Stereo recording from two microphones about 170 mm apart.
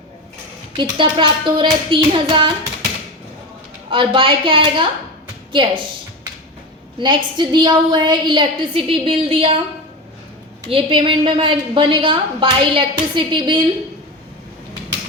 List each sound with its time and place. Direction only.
0.8 s a woman's voice: 30° right (ahead or behind)
3.8 s a woman's voice: 30° right (ahead or behind)
7.0 s a woman's voice: 25° right (ahead or behind)
10.7 s a woman's voice: 30° right (ahead or behind)